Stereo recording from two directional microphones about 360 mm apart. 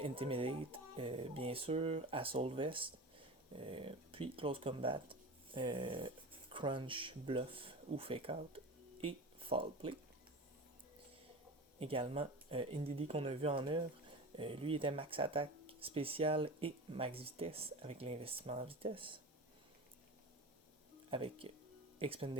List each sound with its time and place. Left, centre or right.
0.0 s speech: centre
11.8 s speech: centre
21.1 s speech: centre